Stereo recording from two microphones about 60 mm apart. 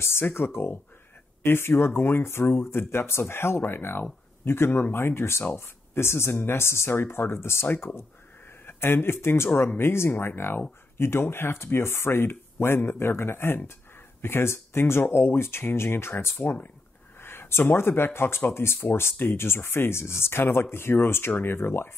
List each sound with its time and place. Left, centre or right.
0.0 s speech: left